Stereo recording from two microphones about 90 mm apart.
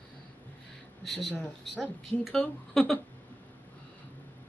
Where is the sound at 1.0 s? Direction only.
5° left (ahead or behind).